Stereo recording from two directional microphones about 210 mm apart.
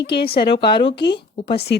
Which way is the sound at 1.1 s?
25° left (ahead or behind).